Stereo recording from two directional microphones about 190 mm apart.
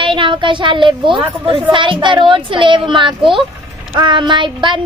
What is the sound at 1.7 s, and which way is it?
A woman's voice, 25° right (ahead or behind).